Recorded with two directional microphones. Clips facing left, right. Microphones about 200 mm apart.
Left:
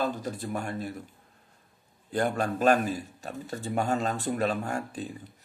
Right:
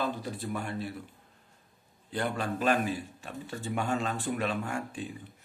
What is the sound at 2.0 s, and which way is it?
A man's voice, 45° left (ahead or behind).